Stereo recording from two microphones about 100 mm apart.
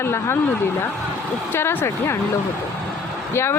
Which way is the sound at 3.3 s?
25° left (ahead or behind).